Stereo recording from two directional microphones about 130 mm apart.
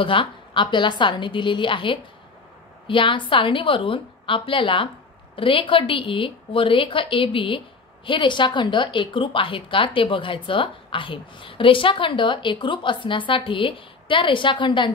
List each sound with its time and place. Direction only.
0.0 s a woman's voice: 40° left (ahead or behind)